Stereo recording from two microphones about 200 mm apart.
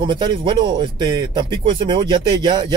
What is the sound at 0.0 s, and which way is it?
Speech, 25° right (ahead or behind).